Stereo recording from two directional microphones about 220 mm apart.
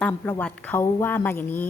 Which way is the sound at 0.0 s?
10° left (ahead or behind).